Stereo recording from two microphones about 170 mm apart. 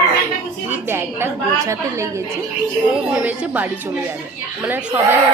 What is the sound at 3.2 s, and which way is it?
A woman's voice, 10° right (ahead or behind).